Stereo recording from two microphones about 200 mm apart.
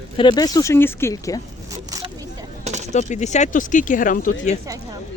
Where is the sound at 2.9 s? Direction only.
35° left (ahead or behind).